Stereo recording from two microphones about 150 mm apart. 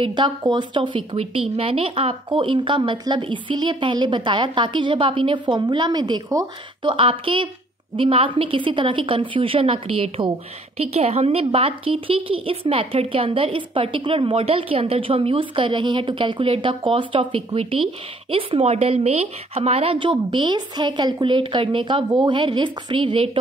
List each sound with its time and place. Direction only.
0.0 s a woman's voice: 30° right (ahead or behind)